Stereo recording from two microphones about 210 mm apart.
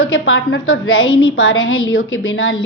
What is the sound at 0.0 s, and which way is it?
A woman's voice, 70° left (ahead or behind).